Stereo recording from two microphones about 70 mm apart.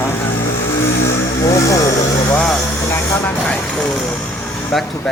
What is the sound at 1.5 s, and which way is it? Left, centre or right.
Speech, left.